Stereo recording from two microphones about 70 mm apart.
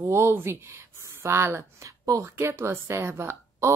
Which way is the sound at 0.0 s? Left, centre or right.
Right.